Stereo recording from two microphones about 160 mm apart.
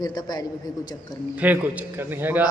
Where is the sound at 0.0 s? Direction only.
25° left (ahead or behind).